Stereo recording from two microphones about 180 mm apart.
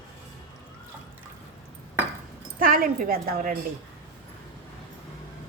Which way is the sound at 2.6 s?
50° right (ahead or behind).